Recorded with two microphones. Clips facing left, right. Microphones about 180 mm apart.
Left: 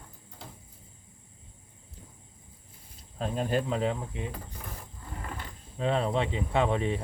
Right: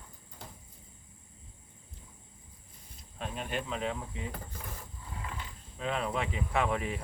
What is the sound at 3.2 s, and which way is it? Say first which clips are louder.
Speech: left 8 dB; 35° left (ahead or behind).